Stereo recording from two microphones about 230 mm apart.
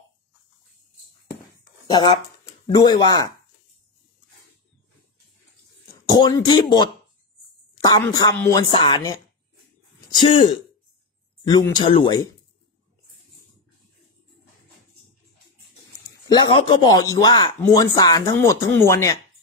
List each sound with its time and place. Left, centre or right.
2.6 s a man's voice: centre
6.1 s a man's voice: centre
16.1 s a man's voice: centre